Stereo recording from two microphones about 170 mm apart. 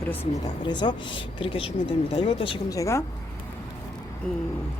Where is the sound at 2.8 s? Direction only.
15° left (ahead or behind).